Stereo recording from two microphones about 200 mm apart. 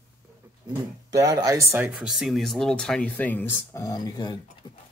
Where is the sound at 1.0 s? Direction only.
15° right (ahead or behind).